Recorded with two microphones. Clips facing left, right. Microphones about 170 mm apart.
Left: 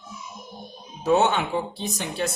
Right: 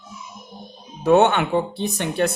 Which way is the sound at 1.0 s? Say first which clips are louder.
Right 5 dB; 60° right (ahead or behind).